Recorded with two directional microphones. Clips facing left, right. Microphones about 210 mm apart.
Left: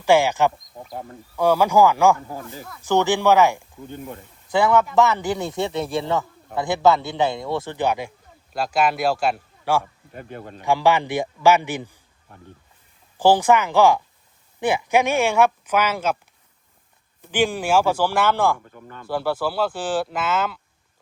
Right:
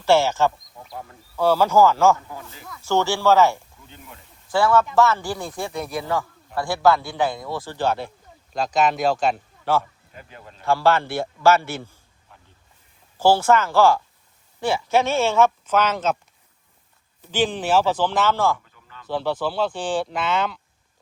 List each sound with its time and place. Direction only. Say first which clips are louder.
0.0 s speech: left 1 dB; 15° left (ahead or behind)
2.2 s speech: left 5 dB; 40° left (ahead or behind)
2.8 s speech: left 2 dB; 15° left (ahead or behind)
3.8 s speech: left 12 dB; 50° left (ahead or behind)
4.5 s a man's voice: left 1 dB; 20° left (ahead or behind)
10.1 s speech: left 8 dB; 50° left (ahead or behind)
10.6 s speech: even; 15° left (ahead or behind)
12.3 s speech: left 7 dB; 55° left (ahead or behind)
13.1 s speech: left 1 dB; 15° left (ahead or behind)
17.3 s speech: left 1 dB; 10° left (ahead or behind)
18.6 s a sound: left 8 dB; 55° left (ahead or behind)
19.0 s speech: left 1 dB; 10° left (ahead or behind)